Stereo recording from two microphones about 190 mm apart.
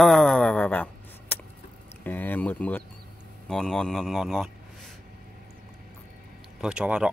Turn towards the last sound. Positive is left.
turn(degrees=-5)  # may be behind; listen again after turning